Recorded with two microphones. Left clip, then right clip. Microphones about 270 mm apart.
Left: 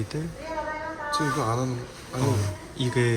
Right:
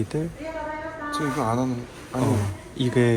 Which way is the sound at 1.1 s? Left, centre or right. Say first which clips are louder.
Right 1 dB; right.